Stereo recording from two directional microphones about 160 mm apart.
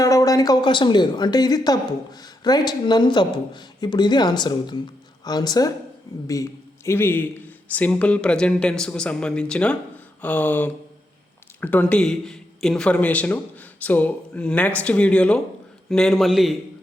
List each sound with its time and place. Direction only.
0.0 s a man's voice: 20° left (ahead or behind); by 16.6 s centre (ahead or behind)